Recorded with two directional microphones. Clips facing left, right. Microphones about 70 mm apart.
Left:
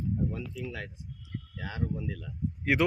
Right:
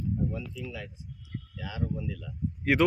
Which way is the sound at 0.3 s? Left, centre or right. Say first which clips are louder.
Left 1 dB; left.